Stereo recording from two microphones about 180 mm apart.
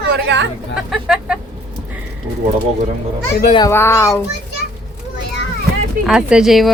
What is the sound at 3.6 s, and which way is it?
Speech, 15° left (ahead or behind).